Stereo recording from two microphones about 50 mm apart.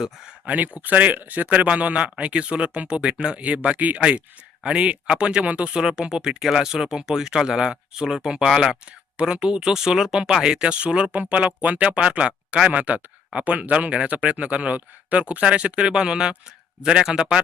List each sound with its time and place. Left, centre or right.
0.4 s speech: right